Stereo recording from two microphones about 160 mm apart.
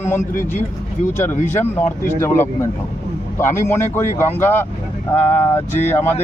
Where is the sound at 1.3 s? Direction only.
15° left (ahead or behind).